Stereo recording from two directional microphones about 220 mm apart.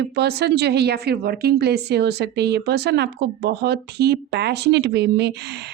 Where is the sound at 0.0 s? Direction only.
50° right (ahead or behind).